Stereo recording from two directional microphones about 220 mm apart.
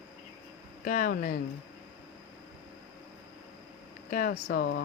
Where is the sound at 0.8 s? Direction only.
40° left (ahead or behind).